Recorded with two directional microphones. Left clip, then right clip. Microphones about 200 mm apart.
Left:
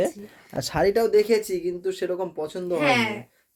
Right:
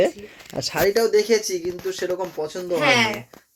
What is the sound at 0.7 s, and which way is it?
Speech, 15° left (ahead or behind).